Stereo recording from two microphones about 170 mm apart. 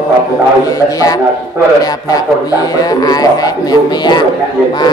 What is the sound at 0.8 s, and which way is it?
A man's voice, 20° left (ahead or behind).